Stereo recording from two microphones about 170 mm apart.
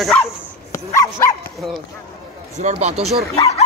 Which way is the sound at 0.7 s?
15° left (ahead or behind).